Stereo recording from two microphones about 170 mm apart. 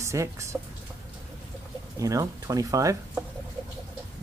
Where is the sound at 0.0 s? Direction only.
15° right (ahead or behind).